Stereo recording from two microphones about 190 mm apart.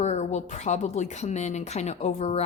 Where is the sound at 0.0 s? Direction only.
35° left (ahead or behind).